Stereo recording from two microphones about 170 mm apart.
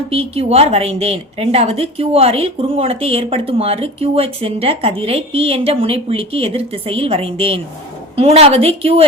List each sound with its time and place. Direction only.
0.1 s a woman's voice: 35° right (ahead or behind)